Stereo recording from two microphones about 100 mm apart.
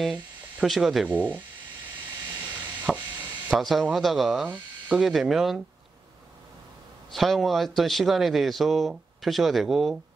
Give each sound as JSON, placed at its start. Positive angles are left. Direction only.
{"t": 0.0, "sound": "speech", "side_deg": 0}
{"t": 1.0, "sound": "speech", "side_deg": -20}
{"t": 2.4, "sound": "chopping", "side_deg": -15}
{"t": 3.4, "sound": "speech", "side_deg": 0}
{"t": 4.5, "sound": "speech", "side_deg": -15}
{"t": 5.0, "sound": "speech", "side_deg": 0}
{"t": 7.1, "sound": "speech", "side_deg": 0}